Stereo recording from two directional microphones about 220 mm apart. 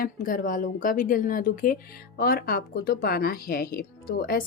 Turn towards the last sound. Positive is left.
turn(degrees=45)  # may be behind; listen again after turning